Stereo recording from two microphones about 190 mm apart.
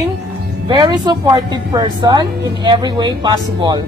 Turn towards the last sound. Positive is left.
turn(degrees=-20)  # may be behind; listen again after turning